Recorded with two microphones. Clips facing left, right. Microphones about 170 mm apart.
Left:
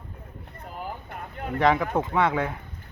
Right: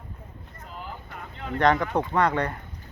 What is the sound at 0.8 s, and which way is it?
Boat, 50° left (ahead or behind).